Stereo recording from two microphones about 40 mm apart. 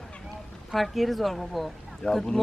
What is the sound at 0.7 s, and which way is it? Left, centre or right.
Speech, centre.